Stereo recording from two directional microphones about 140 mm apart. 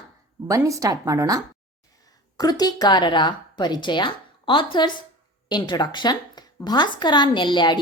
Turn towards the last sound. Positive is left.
turn(degrees=35)  # may be behind; listen again after turning